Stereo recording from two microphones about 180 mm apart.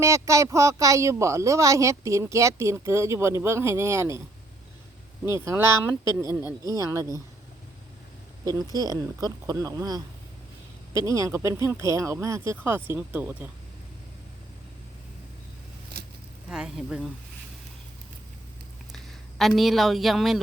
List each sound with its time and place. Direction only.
0.0 s speech: 15° right (ahead or behind)
5.3 s speech: 15° right (ahead or behind)
8.7 s speech: 20° right (ahead or behind)
16.5 s speech: 5° right (ahead or behind)
18.9 s speech: centre (ahead or behind)